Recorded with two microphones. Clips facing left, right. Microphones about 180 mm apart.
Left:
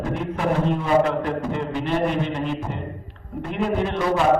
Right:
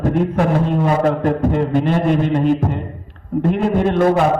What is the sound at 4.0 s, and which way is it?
Speech, 50° right (ahead or behind).